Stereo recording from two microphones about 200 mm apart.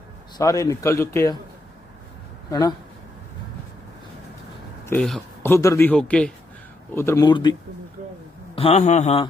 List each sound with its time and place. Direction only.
0.3 s speech: 15° left (ahead or behind)
2.5 s speech: 20° left (ahead or behind)
4.9 s speech: 5° left (ahead or behind); by 7.5 s 20° left (ahead or behind)
8.5 s a man's voice: 30° left (ahead or behind)